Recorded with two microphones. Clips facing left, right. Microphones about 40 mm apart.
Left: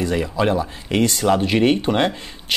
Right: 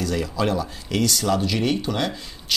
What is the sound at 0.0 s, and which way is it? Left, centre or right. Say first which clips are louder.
Speech: left 4 dB; left.